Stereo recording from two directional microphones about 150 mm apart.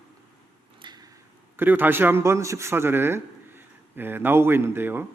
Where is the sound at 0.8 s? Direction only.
30° right (ahead or behind).